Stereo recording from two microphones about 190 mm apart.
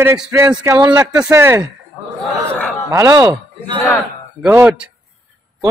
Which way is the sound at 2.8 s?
15° right (ahead or behind).